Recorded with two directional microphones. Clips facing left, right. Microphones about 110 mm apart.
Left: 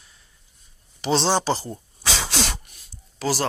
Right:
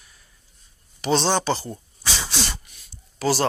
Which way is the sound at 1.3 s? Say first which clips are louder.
Even; 30° left (ahead or behind).